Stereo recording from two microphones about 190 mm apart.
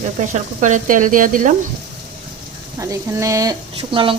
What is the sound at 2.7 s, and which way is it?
Speech, 15° right (ahead or behind).